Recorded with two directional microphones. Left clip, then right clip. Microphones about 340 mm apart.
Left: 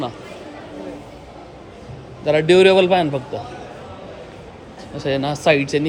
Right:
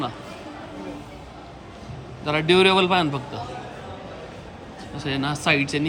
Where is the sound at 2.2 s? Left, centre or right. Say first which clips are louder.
Left 5 dB; centre.